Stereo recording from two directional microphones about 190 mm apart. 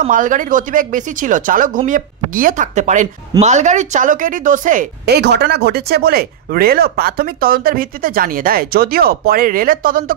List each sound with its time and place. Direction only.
0.0 s a woman's voice: 45° right (ahead or behind)